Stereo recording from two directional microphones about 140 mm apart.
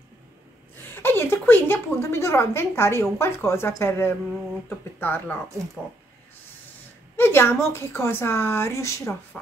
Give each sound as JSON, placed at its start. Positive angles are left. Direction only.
{"t": 0.9, "sound": "a sound", "side_deg": 15}
{"t": 1.5, "sound": "a woman's voice", "side_deg": 15}
{"t": 7.2, "sound": "a woman's voice", "side_deg": 15}